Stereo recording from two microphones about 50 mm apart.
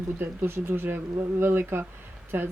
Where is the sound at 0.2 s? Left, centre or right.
Right.